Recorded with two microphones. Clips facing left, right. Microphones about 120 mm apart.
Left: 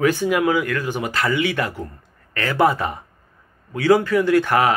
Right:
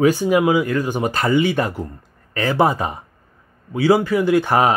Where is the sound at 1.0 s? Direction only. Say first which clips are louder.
Right 4 dB; 25° right (ahead or behind).